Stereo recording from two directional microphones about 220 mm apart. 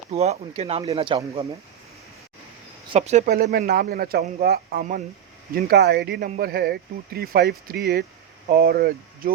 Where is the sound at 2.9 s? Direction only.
30° right (ahead or behind).